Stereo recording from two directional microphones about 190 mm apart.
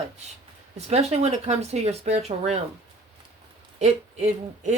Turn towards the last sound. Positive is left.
turn(degrees=-35)  # may be behind; listen again after turning